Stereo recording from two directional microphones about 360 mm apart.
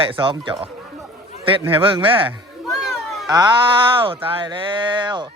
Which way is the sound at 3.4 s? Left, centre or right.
Centre.